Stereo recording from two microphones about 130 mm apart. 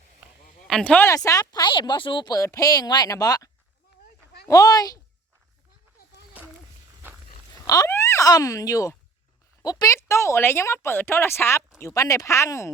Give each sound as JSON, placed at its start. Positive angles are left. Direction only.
{"t": 0.7, "sound": "speech", "side_deg": 5}
{"t": 1.0, "sound": "speech", "side_deg": 25}
{"t": 7.7, "sound": "speech", "side_deg": 25}